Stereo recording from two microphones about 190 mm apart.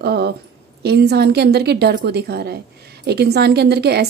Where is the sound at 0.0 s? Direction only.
60° right (ahead or behind).